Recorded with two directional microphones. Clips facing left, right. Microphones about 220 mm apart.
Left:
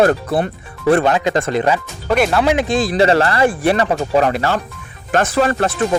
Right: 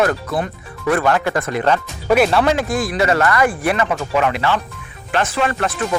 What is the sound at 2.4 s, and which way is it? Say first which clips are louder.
Speech: left 2 dB; 20° left (ahead or behind).